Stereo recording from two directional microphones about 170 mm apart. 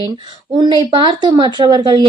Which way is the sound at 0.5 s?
25° right (ahead or behind).